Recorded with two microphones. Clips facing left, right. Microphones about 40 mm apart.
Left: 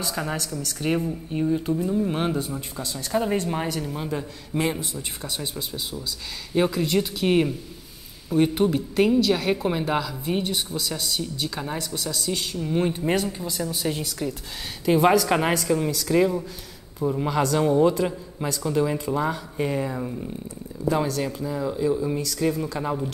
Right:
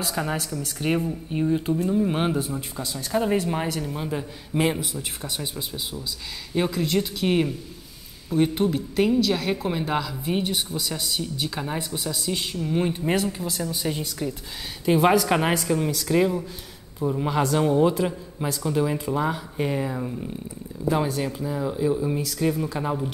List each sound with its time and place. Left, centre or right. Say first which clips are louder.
0.1 s a woman's voice: right 2 dB; centre
0.6 s a man's voice: left 1 dB; centre
6.5 s a woman's voice: left 2 dB; centre
12.3 s a woman's voice: even; centre